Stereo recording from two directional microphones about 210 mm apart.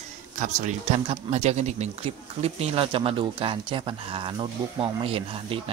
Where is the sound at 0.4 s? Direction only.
35° right (ahead or behind).